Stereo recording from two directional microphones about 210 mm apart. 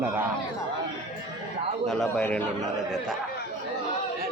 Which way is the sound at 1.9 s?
5° left (ahead or behind).